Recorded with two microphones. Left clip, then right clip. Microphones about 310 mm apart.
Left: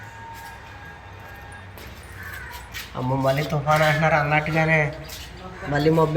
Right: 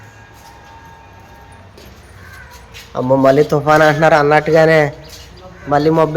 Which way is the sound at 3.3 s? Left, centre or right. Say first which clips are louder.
Right 10 dB; right.